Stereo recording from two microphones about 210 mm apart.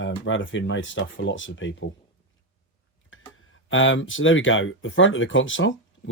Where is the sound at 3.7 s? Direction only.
65° left (ahead or behind).